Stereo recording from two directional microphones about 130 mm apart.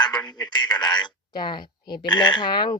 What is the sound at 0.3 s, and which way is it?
Speech, 35° left (ahead or behind).